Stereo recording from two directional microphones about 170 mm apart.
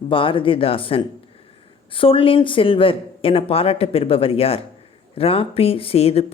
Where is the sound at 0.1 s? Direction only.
30° left (ahead or behind).